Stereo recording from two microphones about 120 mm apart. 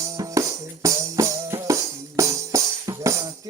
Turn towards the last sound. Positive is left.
turn(degrees=-30)  # may be behind; listen again after turning